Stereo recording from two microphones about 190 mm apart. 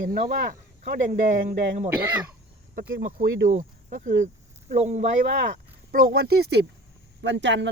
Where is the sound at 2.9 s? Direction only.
45° right (ahead or behind).